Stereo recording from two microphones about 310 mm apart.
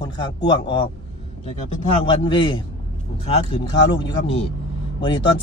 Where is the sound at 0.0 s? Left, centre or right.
Centre.